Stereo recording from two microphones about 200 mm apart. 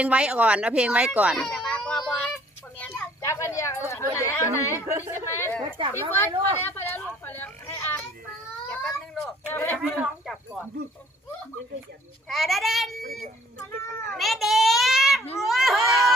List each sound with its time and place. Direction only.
0.0 s a child's voice: 5° right (ahead or behind); by 4.8 s 15° left (ahead or behind)
4.9 s a woman's voice: 15° right (ahead or behind)
5.4 s speech: 10° left (ahead or behind)
8.7 s a sound: 5° left (ahead or behind)
10.0 s speech: 5° right (ahead or behind)
12.3 s speech: centre (ahead or behind)
14.1 s a child's voice: centre (ahead or behind)